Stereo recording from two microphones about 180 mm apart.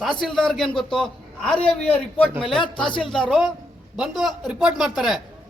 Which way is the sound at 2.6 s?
30° left (ahead or behind).